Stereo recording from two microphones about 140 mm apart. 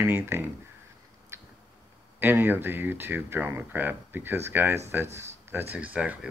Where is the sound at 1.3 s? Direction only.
20° right (ahead or behind).